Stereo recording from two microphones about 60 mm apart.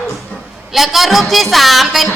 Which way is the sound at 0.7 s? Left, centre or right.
Centre.